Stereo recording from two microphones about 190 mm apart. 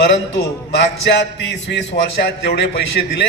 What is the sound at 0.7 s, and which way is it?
A man's voice, 70° left (ahead or behind).